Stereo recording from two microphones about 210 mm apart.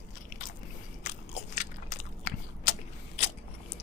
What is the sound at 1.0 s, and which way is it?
Biting, 35° left (ahead or behind).